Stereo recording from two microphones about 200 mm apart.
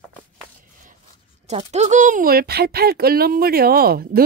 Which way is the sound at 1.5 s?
35° right (ahead or behind).